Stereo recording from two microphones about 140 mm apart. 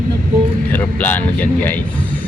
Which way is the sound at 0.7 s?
15° left (ahead or behind).